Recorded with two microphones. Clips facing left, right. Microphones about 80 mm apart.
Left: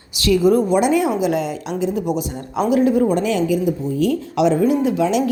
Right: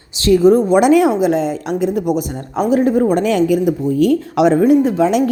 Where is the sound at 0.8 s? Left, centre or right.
Right.